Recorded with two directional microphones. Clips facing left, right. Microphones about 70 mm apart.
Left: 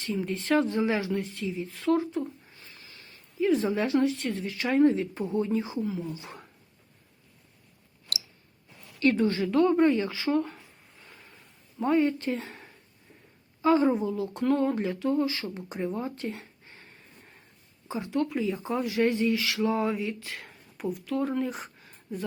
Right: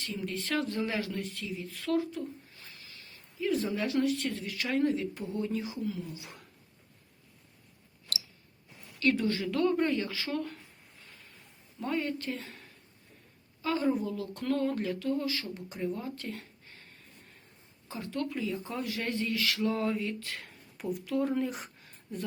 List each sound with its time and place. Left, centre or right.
0.0 s speech: left
3.4 s speech: left
9.0 s speech: left
11.8 s speech: left
17.8 s speech: centre